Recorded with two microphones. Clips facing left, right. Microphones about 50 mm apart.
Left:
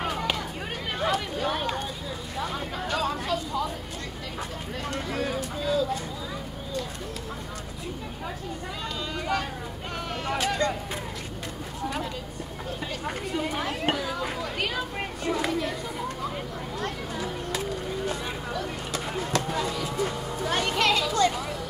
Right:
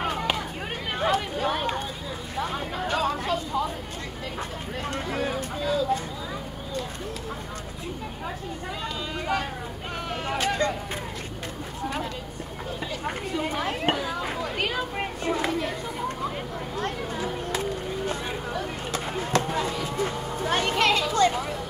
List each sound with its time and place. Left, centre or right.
0.0 s a sound: right
1.5 s speech: right
2.4 s a sound: right
4.8 s speech: right
5.6 s speech: centre
9.3 s speech: centre
10.6 s speech: right
13.0 s speech: right
16.7 s a sound: right